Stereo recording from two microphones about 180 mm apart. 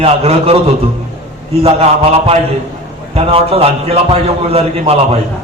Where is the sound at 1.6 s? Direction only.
30° right (ahead or behind).